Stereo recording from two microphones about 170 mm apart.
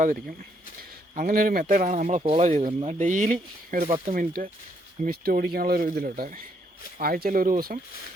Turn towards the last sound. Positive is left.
turn(degrees=-55)  # may be behind; listen again after turning